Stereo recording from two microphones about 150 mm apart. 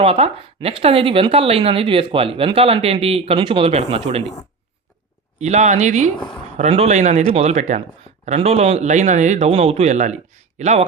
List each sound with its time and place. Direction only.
0.0 s speech: 40° right (ahead or behind)
5.4 s speech: 50° right (ahead or behind)